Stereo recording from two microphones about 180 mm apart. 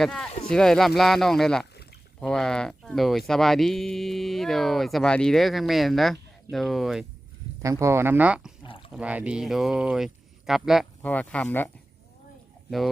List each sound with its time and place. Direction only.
0.0 s speech: centre (ahead or behind)
7.6 s speech: 15° right (ahead or behind)
8.6 s pour: 30° left (ahead or behind)
8.9 s speech: 5° right (ahead or behind); by 11.7 s 10° left (ahead or behind)